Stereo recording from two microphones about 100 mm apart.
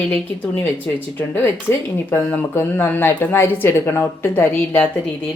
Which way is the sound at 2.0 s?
15° left (ahead or behind).